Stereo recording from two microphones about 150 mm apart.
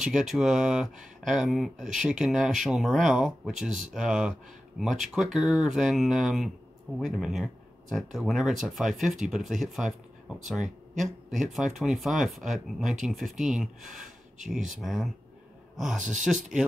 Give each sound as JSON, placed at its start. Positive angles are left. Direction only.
{"t": 0.0, "sound": "speech", "side_deg": -5}
{"t": 16.0, "sound": "speech", "side_deg": -55}